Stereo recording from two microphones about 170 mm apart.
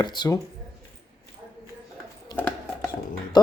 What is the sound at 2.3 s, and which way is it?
Music, 10° left (ahead or behind).